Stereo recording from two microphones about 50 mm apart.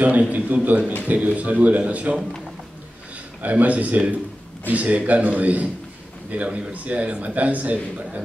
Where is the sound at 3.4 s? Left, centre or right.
Right.